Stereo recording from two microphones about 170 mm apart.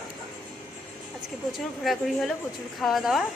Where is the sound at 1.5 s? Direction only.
Centre (ahead or behind).